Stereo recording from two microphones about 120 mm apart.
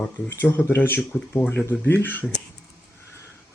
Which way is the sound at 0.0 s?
15° left (ahead or behind).